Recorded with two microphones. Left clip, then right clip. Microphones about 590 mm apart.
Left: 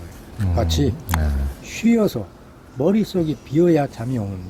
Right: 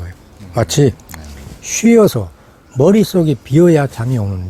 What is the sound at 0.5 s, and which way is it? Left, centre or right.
Speech, right.